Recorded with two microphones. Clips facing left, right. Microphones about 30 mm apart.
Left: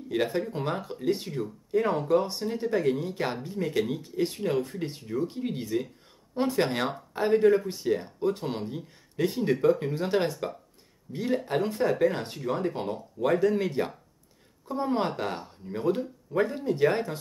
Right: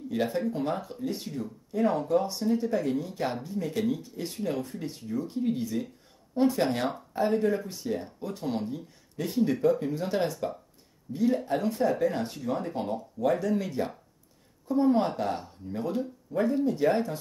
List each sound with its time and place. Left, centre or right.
0.2 s speech: left
0.8 s speech: left
1.2 s speech: left
1.8 s speech: centre
2.2 s speech: left
2.5 s speech: left
13.2 s speech: left
14.8 s speech: left
15.1 s speech: left